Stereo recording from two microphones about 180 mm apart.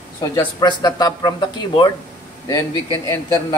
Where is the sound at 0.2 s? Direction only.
20° left (ahead or behind).